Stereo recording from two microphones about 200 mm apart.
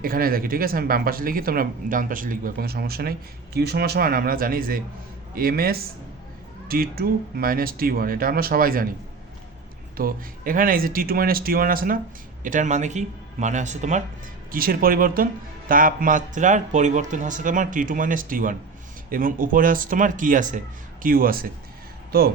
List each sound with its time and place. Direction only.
0.0 s speech: 45° right (ahead or behind)
10.0 s speech: 45° right (ahead or behind)